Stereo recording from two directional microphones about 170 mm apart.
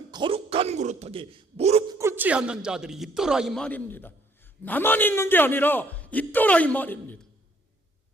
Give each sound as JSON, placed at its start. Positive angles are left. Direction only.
{"t": 0.1, "sound": "a man's voice", "side_deg": -30}
{"t": 1.9, "sound": "a man's voice", "side_deg": -15}